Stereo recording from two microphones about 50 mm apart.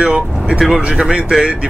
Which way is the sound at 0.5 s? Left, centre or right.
Centre.